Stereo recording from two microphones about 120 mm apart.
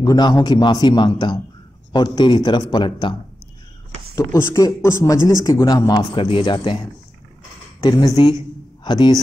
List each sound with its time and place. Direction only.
0.0 s a man's voice: 35° left (ahead or behind)
4.1 s a man's voice: 25° left (ahead or behind)
8.2 s a man's voice: 40° left (ahead or behind)